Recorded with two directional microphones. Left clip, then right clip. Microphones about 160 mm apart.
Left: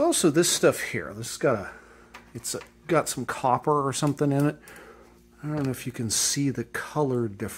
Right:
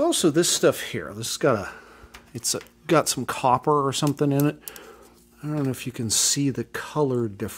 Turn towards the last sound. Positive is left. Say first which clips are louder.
# right 2 dB
turn(degrees=-25)  # may be behind; listen again after turning